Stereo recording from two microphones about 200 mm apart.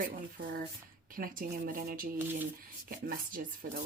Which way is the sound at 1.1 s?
45° right (ahead or behind).